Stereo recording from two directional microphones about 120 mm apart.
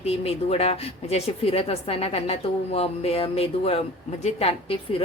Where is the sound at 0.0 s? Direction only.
55° left (ahead or behind).